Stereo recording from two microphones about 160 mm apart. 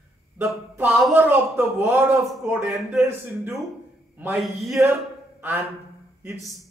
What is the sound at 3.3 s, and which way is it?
Speech, 10° right (ahead or behind).